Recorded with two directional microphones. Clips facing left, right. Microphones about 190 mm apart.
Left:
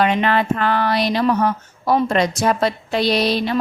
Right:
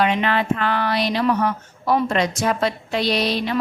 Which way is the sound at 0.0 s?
45° left (ahead or behind).